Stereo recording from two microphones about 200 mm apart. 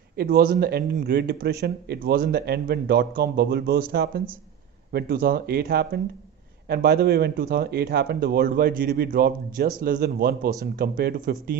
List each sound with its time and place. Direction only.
0.1 s speech: 50° right (ahead or behind)